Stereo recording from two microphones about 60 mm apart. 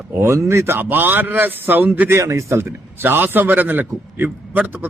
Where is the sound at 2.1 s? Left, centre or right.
Right.